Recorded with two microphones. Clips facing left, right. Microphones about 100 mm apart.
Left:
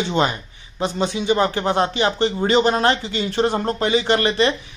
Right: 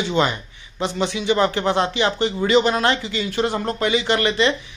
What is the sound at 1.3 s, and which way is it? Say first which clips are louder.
Speech: right 1 dB; 20° left (ahead or behind).